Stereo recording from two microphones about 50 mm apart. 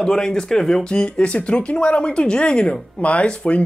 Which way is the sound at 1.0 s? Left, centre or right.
Left.